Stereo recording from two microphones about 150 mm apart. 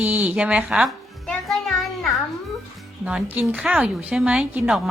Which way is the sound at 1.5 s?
Centre (ahead or behind).